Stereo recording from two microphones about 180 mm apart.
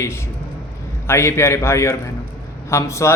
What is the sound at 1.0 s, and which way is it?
A man's voice, 15° left (ahead or behind).